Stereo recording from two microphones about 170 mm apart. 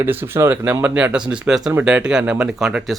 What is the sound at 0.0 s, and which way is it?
A man's voice, 15° right (ahead or behind).